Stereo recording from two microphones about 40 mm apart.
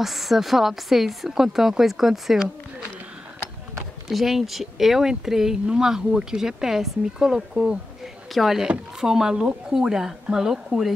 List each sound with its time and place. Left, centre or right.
0.0 s speech: centre
4.1 s speech: centre
8.0 s a sound: centre
8.6 s speech: centre